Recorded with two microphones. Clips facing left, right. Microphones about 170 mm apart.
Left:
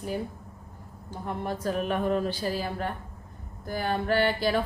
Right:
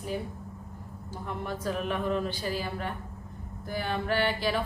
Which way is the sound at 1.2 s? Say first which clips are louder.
Left 3 dB; 40° left (ahead or behind).